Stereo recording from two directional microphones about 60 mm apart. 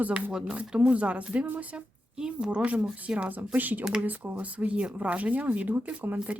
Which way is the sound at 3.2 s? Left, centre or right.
Right.